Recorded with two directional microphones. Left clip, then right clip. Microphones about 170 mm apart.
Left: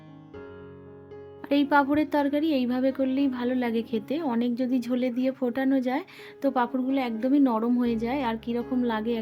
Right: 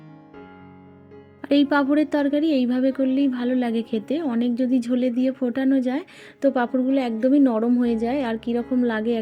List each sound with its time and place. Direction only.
1.4 s speech: 25° right (ahead or behind)